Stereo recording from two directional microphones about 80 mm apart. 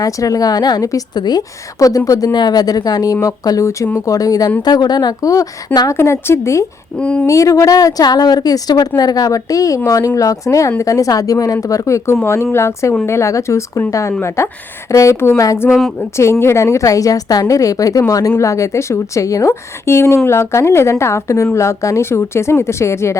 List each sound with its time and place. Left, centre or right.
0.0 s a woman's voice: left
2.3 s a woman's voice: left
4.6 s speech: left
5.9 s a woman's voice: left
7.0 s speech: centre
7.3 s a woman's voice: left